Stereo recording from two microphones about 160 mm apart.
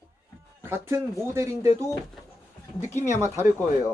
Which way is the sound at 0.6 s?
15° right (ahead or behind).